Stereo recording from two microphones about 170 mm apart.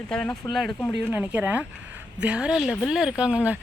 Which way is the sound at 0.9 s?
10° right (ahead or behind).